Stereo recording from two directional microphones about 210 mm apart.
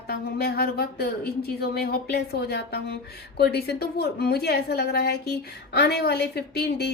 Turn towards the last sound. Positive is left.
turn(degrees=50)  # may be behind; listen again after turning